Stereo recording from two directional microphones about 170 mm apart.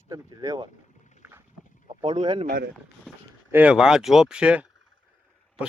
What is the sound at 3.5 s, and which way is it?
Speech, 5° right (ahead or behind).